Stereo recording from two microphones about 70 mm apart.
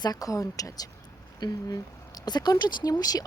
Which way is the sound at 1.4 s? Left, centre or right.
Left.